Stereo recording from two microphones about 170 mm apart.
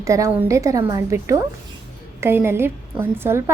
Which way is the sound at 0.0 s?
20° right (ahead or behind).